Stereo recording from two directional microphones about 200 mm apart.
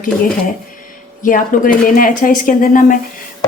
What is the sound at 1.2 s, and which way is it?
Speech, 40° left (ahead or behind).